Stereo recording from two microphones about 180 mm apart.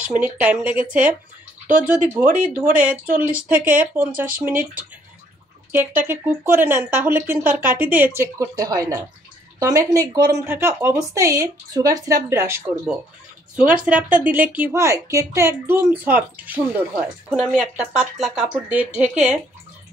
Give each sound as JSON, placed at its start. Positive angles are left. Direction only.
{"t": 0.0, "sound": "a woman's voice", "side_deg": -5}
{"t": 6.0, "sound": "a woman's voice", "side_deg": -10}